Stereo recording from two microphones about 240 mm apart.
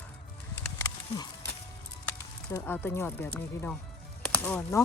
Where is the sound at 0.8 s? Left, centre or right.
Centre.